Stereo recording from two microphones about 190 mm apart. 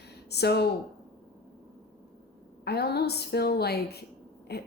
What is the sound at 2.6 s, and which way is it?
Speech, 60° left (ahead or behind).